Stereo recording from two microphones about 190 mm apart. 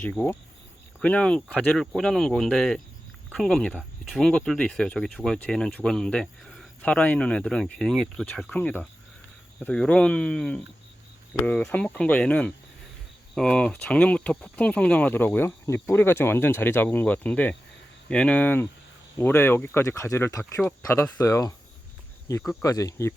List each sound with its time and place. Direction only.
0.0 s speech: 10° left (ahead or behind)